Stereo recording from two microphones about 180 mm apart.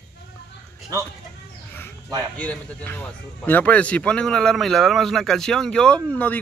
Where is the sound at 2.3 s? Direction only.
10° left (ahead or behind).